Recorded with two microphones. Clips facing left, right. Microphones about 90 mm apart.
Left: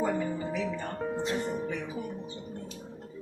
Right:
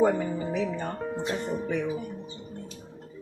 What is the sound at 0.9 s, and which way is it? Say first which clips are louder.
Music: even; centre (ahead or behind).